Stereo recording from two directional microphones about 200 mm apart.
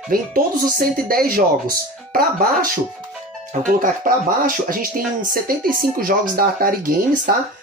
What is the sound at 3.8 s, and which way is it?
Speech, 45° right (ahead or behind).